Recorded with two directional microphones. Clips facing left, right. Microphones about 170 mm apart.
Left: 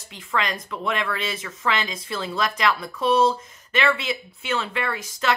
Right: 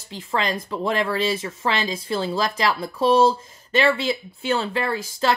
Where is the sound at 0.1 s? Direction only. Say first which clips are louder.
Right 2 dB; 30° right (ahead or behind).